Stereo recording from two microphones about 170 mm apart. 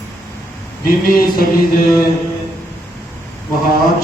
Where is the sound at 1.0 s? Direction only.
55° left (ahead or behind).